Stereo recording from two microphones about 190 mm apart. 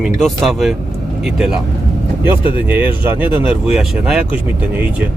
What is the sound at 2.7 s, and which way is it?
Speech, 10° right (ahead or behind).